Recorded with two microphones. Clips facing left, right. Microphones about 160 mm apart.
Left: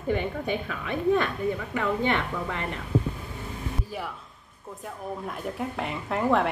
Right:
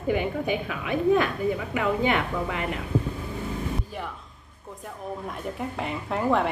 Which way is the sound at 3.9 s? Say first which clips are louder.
Left 1 dB; 5° left (ahead or behind).